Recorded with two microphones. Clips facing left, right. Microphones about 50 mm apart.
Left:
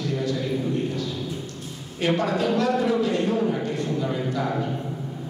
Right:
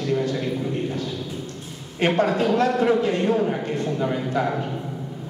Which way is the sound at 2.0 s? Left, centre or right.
Right.